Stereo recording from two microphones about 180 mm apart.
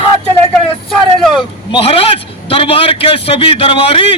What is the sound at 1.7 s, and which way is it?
A man's voice, 30° left (ahead or behind).